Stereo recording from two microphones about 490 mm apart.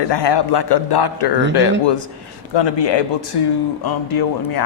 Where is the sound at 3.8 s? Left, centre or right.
Left.